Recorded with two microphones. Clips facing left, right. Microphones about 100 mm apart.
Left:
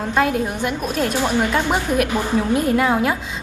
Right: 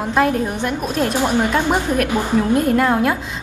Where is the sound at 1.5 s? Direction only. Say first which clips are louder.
Right 2 dB; 15° right (ahead or behind).